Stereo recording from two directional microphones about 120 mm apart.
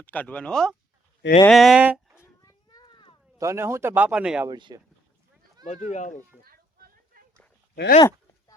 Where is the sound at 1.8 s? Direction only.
10° right (ahead or behind).